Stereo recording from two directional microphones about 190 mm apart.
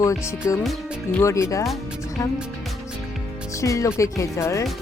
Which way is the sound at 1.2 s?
15° left (ahead or behind).